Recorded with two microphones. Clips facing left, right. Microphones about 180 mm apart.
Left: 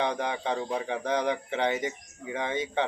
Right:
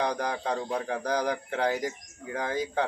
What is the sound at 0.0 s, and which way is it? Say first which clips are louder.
Speech: even; centre (ahead or behind).